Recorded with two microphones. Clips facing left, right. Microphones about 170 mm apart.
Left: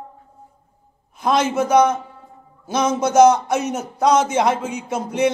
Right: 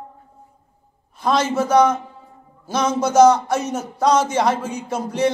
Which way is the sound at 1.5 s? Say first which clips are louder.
Right 1 dB; 15° left (ahead or behind).